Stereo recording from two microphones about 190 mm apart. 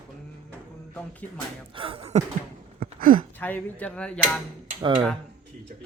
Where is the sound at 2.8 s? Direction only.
50° right (ahead or behind).